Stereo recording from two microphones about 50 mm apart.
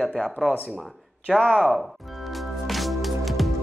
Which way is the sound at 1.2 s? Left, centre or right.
Centre.